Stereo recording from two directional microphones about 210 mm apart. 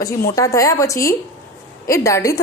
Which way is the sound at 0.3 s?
15° left (ahead or behind).